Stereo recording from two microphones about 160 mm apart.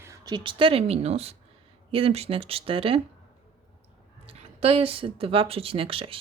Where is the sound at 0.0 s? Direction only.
20° right (ahead or behind).